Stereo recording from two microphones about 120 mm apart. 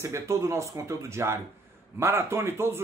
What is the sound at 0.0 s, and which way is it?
A man's voice, 25° right (ahead or behind).